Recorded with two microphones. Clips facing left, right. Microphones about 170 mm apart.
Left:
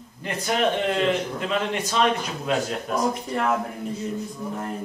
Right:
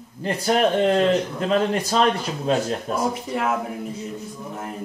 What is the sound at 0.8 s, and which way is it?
A man's voice, 40° right (ahead or behind).